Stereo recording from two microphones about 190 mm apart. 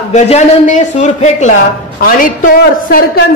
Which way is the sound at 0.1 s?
35° left (ahead or behind).